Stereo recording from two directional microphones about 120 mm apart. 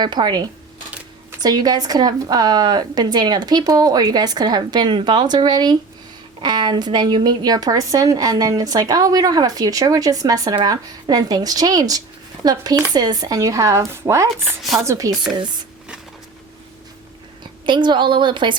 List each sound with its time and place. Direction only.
0.0 s a woman's voice: 35° right (ahead or behind)
17.7 s a woman's voice: 40° right (ahead or behind)